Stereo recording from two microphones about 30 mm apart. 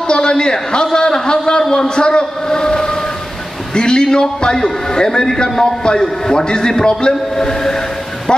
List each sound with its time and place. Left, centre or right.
0.1 s a man's voice: left